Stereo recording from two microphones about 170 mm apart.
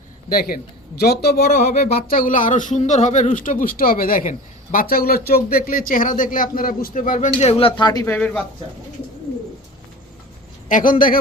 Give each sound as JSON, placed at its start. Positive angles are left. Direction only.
{"t": 0.3, "sound": "speech", "side_deg": 60}
{"t": 8.0, "sound": "speech", "side_deg": 10}
{"t": 10.7, "sound": "speech", "side_deg": 50}